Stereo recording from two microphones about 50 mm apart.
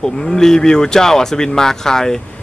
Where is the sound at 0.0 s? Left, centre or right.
Centre.